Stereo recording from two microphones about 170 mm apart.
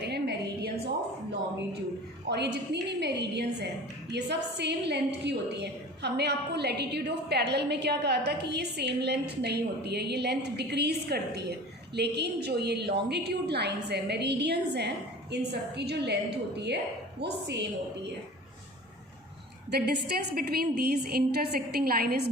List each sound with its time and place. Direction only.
0.0 s a sound: 75° right (ahead or behind)
2.3 s a woman's voice: 80° right
19.7 s a woman's voice: 75° right (ahead or behind)